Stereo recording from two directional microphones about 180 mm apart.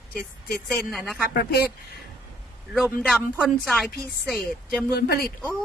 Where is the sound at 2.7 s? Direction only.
Centre (ahead or behind).